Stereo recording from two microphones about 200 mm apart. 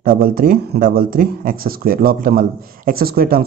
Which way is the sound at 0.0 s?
45° right (ahead or behind).